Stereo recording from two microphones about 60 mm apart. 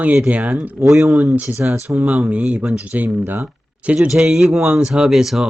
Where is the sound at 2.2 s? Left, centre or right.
Right.